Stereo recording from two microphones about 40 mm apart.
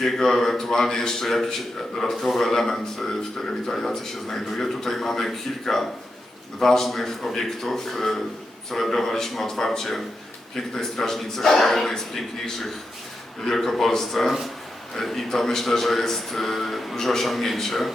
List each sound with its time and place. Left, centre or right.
0.0 s a man's voice: centre
13.4 s a man's voice: centre